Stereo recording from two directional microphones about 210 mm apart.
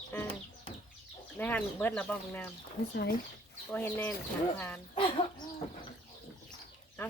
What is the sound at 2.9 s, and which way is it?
Speech, 50° left (ahead or behind).